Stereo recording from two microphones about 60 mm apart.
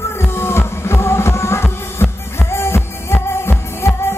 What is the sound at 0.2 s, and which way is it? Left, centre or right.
Music, left.